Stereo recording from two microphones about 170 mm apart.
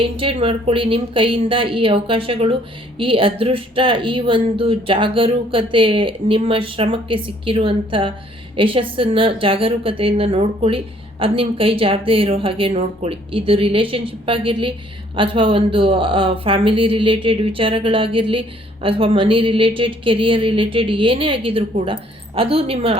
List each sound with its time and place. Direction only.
0.0 s speech: 30° right (ahead or behind)